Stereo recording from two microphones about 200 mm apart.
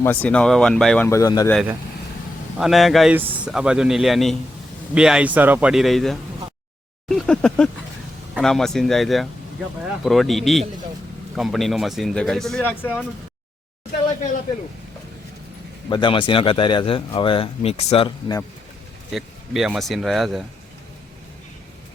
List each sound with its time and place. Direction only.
0.0 s speech: 10° left (ahead or behind)
2.6 s a man's voice: centre (ahead or behind)
7.1 s a sound: 5° left (ahead or behind)
8.4 s a man's voice: centre (ahead or behind)
15.9 s a man's voice: 25° left (ahead or behind)
19.1 s a man's voice: centre (ahead or behind)